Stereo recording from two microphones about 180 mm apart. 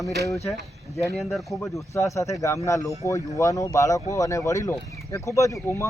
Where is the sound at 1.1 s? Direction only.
Centre (ahead or behind).